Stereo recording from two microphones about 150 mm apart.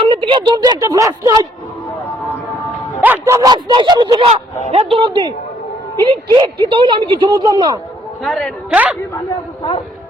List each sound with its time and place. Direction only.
0.0 s speech: 35° right (ahead or behind)
3.0 s speech: 15° right (ahead or behind)
4.7 s a woman's voice: 40° right (ahead or behind)
8.2 s a man's voice: 5° left (ahead or behind)
8.7 s a man's voice: 10° right (ahead or behind)